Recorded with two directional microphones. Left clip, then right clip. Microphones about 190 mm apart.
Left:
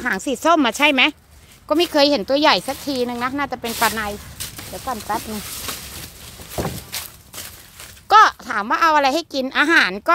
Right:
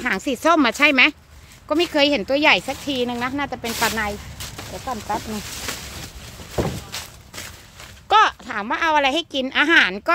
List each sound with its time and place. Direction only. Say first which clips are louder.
0.0 s speech: left 1 dB; 10° left (ahead or behind); by 5.8 s 25° left (ahead or behind)
6.9 s a sound: left 1 dB; 15° left (ahead or behind)
8.1 s speech: left 4 dB; 30° left (ahead or behind)